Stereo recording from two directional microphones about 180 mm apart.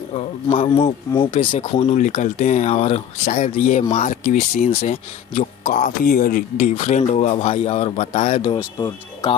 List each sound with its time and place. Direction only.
0.1 s speech: 30° left (ahead or behind)
8.5 s speech: 20° left (ahead or behind)